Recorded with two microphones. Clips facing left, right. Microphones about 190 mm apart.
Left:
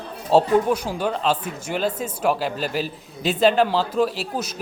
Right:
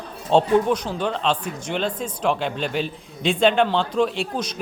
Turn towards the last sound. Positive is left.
turn(degrees=5)  # may be behind; listen again after turning